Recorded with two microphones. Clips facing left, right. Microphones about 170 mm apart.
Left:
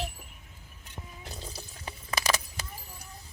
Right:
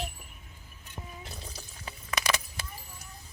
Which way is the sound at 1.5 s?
35° left (ahead or behind).